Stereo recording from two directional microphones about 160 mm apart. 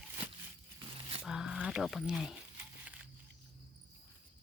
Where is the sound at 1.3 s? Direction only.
5° right (ahead or behind).